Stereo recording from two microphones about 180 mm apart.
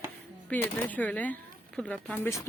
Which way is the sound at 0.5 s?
10° left (ahead or behind).